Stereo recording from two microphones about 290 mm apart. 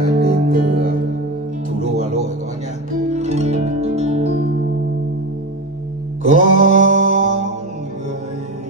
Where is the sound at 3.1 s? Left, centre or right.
Right.